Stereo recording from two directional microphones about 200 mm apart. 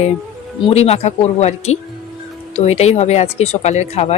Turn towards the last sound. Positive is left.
turn(degrees=35)  # may be behind; listen again after turning